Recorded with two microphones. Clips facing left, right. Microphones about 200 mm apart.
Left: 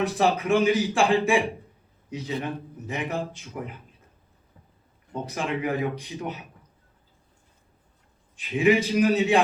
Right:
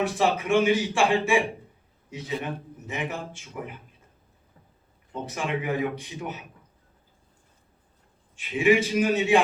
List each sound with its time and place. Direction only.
0.2 s a man's voice: 35° left (ahead or behind)
5.2 s a man's voice: 35° left (ahead or behind)
8.4 s a man's voice: 35° left (ahead or behind)